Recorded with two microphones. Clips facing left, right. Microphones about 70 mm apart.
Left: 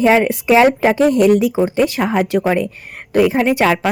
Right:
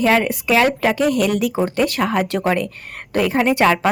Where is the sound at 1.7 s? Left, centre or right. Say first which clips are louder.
Left 3 dB; centre.